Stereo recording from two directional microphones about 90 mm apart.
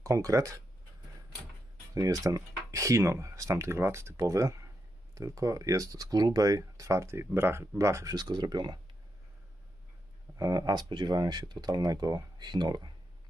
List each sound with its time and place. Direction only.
0.0 s speech: 40° right (ahead or behind)
2.0 s speech: 40° right (ahead or behind)
8.1 s speech: 50° right (ahead or behind)
10.3 s speech: 40° right (ahead or behind)